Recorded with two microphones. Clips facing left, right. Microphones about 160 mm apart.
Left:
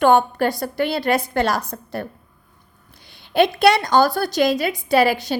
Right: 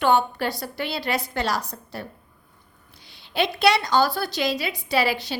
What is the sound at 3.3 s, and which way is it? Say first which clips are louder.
A woman's voice: left 5 dB; 50° left (ahead or behind).